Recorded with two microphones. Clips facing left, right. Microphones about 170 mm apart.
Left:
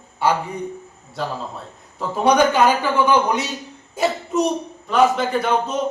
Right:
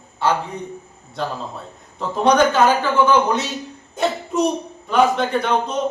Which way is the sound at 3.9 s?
5° left (ahead or behind).